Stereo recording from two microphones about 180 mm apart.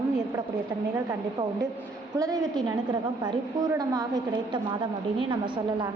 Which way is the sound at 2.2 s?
20° right (ahead or behind).